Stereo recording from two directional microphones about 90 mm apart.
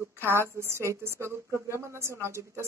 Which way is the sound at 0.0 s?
25° right (ahead or behind).